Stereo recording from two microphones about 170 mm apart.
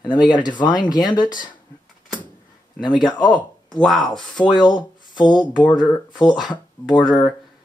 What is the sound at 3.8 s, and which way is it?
Speech, 5° left (ahead or behind).